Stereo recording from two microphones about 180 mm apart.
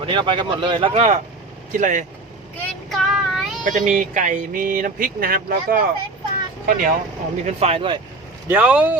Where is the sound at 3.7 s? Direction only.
45° right (ahead or behind).